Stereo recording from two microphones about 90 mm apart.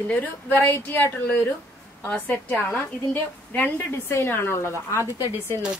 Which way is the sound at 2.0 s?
15° left (ahead or behind).